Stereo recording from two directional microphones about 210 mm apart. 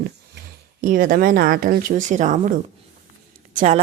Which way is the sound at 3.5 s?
35° right (ahead or behind).